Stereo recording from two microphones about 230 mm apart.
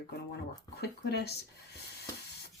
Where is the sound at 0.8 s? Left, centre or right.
Left.